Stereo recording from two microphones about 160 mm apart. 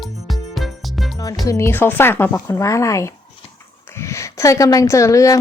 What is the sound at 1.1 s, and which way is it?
A woman's voice, 25° left (ahead or behind).